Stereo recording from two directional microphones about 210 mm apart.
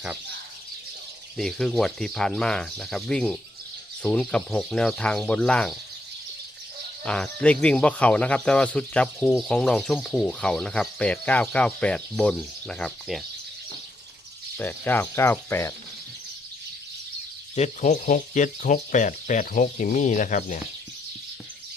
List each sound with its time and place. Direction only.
1.4 s speech: centre (ahead or behind)
7.0 s speech: 5° left (ahead or behind)
14.6 s speech: 10° left (ahead or behind)
17.5 s speech: 35° left (ahead or behind)